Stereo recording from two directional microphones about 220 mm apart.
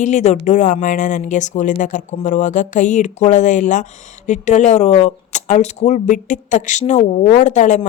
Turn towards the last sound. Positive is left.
turn(degrees=35)  # may be behind; listen again after turning